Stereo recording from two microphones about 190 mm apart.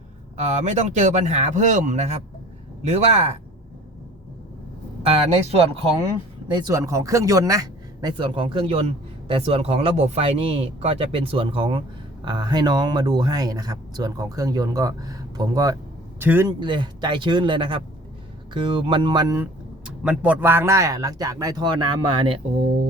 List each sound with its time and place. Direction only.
0.3 s speech: 35° right (ahead or behind)
5.0 s speech: 30° right (ahead or behind)
6.5 s a man's voice: 20° right (ahead or behind)
16.5 s speech: 25° right (ahead or behind)
19.8 s speech: 5° right (ahead or behind); by 22.4 s 25° right (ahead or behind)